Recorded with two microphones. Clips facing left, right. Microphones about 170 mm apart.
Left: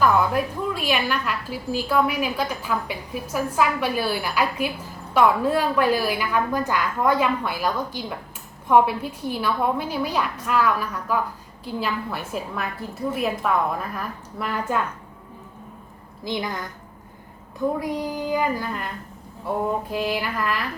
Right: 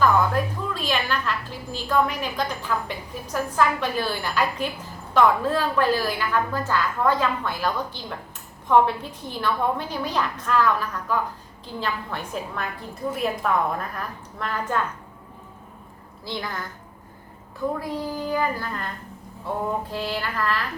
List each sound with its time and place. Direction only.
0.4 s a woman's voice: 10° left (ahead or behind)
16.2 s a woman's voice: 15° left (ahead or behind)
17.7 s a woman's voice: 15° left (ahead or behind)
19.9 s a woman's voice: 10° left (ahead or behind)